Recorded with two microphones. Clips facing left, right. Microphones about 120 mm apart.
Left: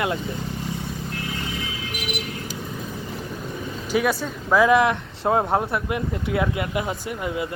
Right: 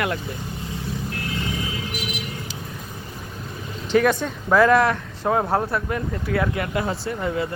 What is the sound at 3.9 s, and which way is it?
Speech, 5° left (ahead or behind).